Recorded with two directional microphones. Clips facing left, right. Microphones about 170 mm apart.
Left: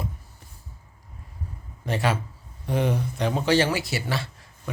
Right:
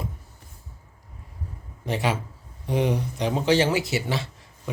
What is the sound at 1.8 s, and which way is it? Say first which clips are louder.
A man's voice: even; 20° right (ahead or behind).